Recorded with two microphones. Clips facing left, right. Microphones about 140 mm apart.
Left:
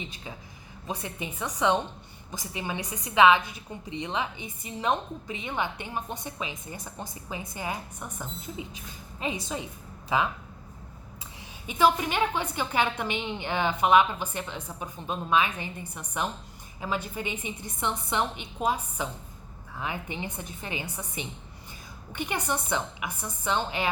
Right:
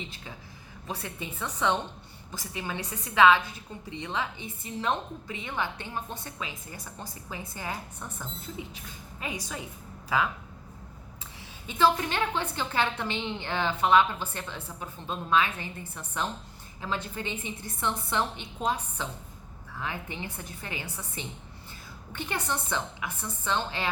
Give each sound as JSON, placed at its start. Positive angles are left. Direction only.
{"t": 0.0, "sound": "a woman's voice", "side_deg": 20}
{"t": 11.7, "sound": "a woman's voice", "side_deg": 15}